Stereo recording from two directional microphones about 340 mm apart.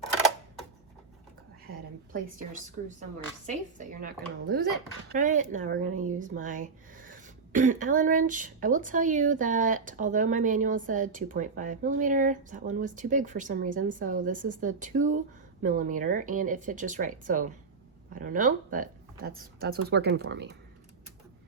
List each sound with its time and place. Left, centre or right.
3.4 s speech: right